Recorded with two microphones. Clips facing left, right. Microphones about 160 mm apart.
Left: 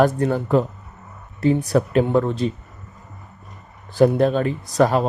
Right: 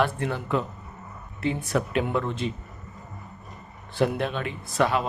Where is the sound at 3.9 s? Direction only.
40° left (ahead or behind).